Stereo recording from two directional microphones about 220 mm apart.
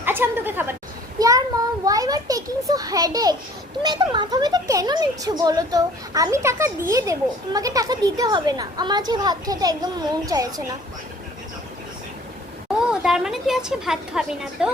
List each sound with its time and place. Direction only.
0.0 s a woman's voice: 10° right (ahead or behind)
1.8 s speech: 15° right (ahead or behind)
12.9 s a woman's voice: centre (ahead or behind)